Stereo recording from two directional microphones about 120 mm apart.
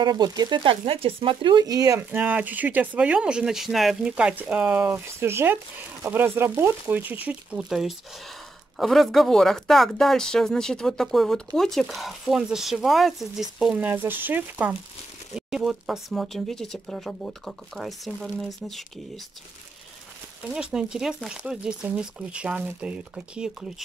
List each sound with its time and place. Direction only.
0.0 s speech: 35° right (ahead or behind)
2.0 s speech: 15° right (ahead or behind)
15.3 s speech: 5° right (ahead or behind)
20.7 s speech: 5° right (ahead or behind)